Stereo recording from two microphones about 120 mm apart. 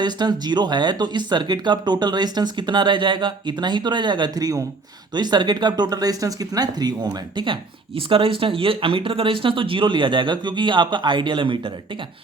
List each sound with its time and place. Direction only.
0.0 s speech: 35° right (ahead or behind)